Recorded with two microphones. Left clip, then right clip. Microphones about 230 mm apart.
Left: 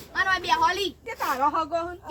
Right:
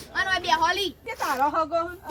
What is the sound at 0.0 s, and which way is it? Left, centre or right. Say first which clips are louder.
A woman's voice: left 1 dB; centre.